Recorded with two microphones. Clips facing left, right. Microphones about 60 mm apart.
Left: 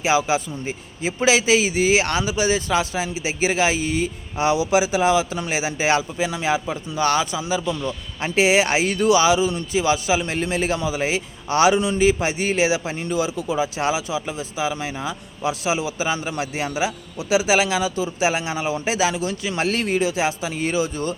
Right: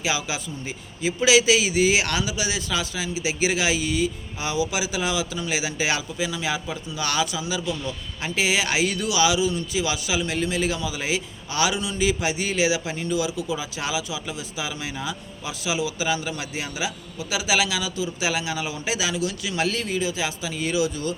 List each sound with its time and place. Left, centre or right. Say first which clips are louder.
0.0 s speech: left 8 dB; left
4.4 s speech: left 8 dB; left
15.4 s speech: left 4 dB; left
19.7 s speech: left 5 dB; left